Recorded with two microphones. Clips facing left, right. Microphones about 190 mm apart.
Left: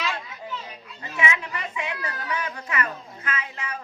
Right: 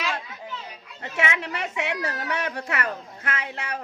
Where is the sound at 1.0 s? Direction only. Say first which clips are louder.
Right 1 dB; 65° right (ahead or behind).